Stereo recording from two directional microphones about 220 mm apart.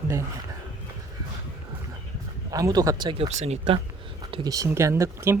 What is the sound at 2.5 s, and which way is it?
Speech, 15° right (ahead or behind).